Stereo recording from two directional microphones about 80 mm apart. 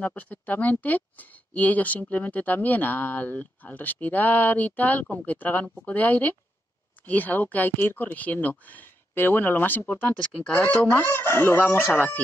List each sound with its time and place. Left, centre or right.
0.0 s speech: centre